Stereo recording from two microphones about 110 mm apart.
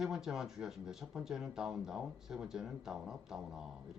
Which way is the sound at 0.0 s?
5° right (ahead or behind).